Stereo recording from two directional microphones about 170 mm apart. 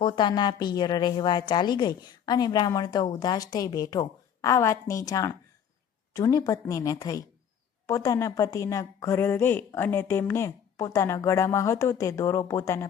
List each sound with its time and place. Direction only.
0.0 s a woman's voice: 25° left (ahead or behind)